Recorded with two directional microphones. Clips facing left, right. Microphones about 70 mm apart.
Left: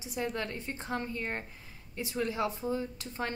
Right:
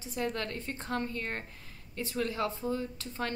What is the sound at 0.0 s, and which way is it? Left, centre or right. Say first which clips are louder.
A woman's voice: even; centre.